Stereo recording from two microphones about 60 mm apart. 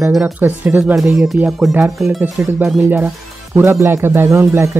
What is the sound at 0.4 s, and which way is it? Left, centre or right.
Speech, right.